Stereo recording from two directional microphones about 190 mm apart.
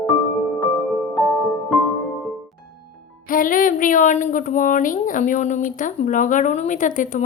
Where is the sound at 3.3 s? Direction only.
45° left (ahead or behind).